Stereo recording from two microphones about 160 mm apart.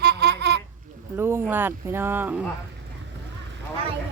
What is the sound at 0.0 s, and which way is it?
Babbling, 90° right.